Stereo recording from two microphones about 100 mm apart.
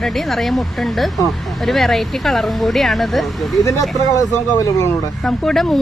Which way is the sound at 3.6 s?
35° left (ahead or behind).